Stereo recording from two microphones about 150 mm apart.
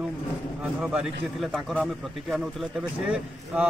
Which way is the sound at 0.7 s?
Centre (ahead or behind).